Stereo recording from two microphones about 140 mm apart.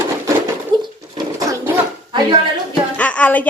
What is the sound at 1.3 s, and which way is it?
Dog, 25° right (ahead or behind).